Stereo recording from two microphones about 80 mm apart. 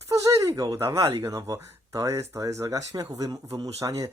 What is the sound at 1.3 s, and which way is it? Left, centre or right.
Speech, right.